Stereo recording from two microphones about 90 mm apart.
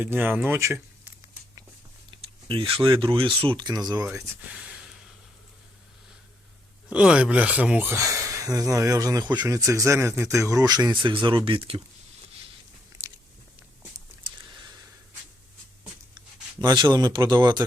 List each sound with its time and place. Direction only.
0.0 s speech: 25° right (ahead or behind)
2.0 s speech: 75° right (ahead or behind); by 4.0 s 50° right (ahead or behind)
4.5 s a sound: 10° right (ahead or behind)
6.9 s speech: 10° right (ahead or behind)
7.9 s speech: 35° right (ahead or behind)
9.5 s speech: 35° right (ahead or behind)
10.5 s speech: 45° right (ahead or behind); by 11.8 s 80° right
14.3 s a sound: 55° right (ahead or behind)
16.1 s speech: 50° right (ahead or behind)